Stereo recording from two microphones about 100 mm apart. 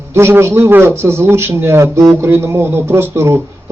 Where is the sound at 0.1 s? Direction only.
25° right (ahead or behind).